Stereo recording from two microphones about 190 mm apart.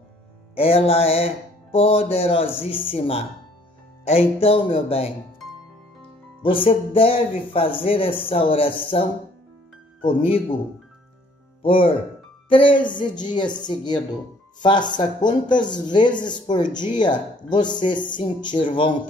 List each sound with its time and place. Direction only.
0.6 s music: 30° left (ahead or behind)
6.4 s speech: 30° left (ahead or behind)
11.6 s speech: 30° left (ahead or behind)